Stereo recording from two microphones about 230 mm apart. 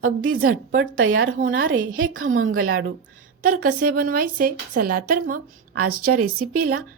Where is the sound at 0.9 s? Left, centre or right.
Right.